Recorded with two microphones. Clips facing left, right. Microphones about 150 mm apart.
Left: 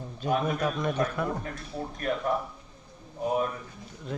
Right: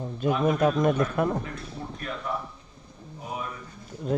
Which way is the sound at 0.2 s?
50° right (ahead or behind).